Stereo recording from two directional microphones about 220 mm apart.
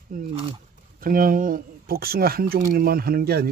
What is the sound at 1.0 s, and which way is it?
Speech, 40° right (ahead or behind).